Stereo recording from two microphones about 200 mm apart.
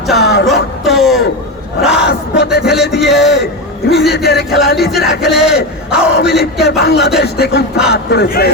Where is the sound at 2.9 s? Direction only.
60° left (ahead or behind).